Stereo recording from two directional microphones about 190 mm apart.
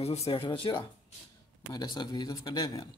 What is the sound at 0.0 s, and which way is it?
Speech, 30° left (ahead or behind).